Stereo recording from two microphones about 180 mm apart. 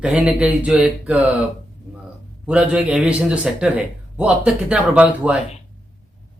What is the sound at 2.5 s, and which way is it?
A man's voice, 5° right (ahead or behind).